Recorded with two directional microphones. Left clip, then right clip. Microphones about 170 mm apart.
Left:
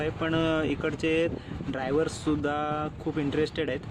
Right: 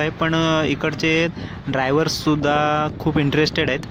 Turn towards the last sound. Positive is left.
turn(degrees=-35)  # may be behind; listen again after turning